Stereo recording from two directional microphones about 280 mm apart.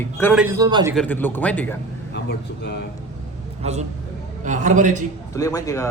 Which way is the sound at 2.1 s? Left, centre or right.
Left.